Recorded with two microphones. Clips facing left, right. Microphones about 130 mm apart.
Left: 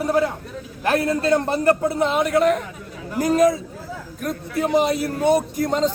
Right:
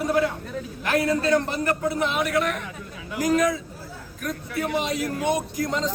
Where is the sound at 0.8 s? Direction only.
30° left (ahead or behind).